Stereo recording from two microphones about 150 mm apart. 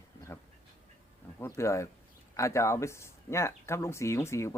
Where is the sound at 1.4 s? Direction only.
20° left (ahead or behind).